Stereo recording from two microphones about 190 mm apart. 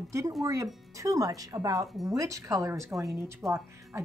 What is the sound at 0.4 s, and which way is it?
A woman's voice, 15° right (ahead or behind).